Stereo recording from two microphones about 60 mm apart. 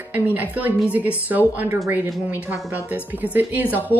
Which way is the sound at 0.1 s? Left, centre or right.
Right.